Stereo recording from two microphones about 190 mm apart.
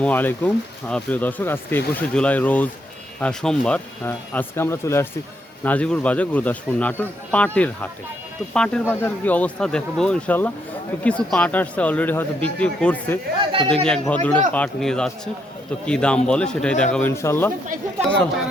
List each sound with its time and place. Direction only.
0.0 s speech: 10° left (ahead or behind)
13.4 s speech: 25° right (ahead or behind)
13.8 s speech: 5° left (ahead or behind)